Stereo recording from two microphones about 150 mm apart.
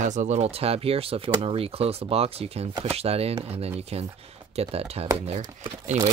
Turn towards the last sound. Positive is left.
turn(degrees=-50)  # may be behind; listen again after turning